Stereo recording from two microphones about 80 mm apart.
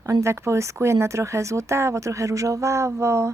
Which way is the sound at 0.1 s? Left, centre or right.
Right.